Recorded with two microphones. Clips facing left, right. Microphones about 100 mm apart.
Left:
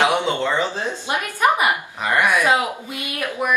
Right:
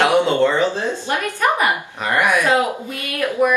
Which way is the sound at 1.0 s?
15° left (ahead or behind).